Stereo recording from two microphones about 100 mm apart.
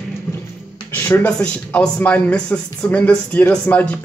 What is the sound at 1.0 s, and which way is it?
Speech, 20° left (ahead or behind).